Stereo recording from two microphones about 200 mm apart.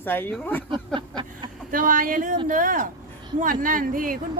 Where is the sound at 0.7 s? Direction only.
25° right (ahead or behind).